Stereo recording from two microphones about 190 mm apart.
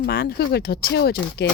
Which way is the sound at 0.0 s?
50° left (ahead or behind).